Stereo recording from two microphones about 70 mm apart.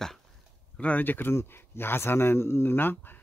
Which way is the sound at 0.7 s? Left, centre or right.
Left.